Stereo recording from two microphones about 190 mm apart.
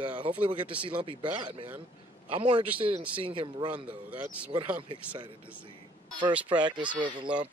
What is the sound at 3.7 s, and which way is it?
Speech, 5° right (ahead or behind).